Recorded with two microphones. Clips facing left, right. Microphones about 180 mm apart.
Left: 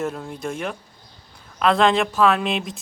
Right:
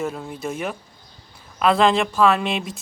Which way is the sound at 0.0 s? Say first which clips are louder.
Even; centre (ahead or behind).